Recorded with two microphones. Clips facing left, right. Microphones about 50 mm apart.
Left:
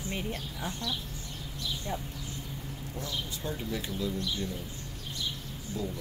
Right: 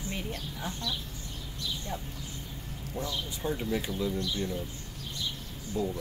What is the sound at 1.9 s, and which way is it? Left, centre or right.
Speech, centre.